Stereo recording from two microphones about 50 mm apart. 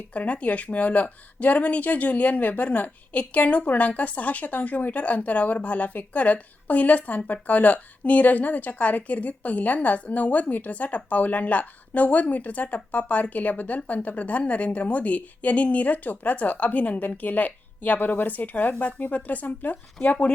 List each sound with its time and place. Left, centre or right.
0.1 s speech: left